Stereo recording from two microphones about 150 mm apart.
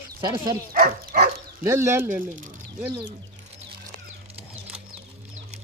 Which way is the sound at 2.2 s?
60° right (ahead or behind).